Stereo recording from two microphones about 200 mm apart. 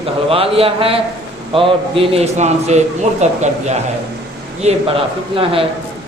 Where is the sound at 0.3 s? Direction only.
30° right (ahead or behind).